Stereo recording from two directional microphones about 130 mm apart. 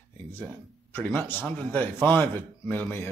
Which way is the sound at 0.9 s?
10° left (ahead or behind).